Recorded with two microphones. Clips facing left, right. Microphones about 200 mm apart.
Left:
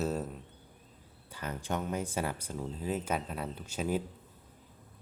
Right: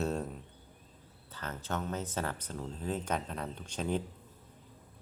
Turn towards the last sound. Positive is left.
turn(degrees=5)  # may be behind; listen again after turning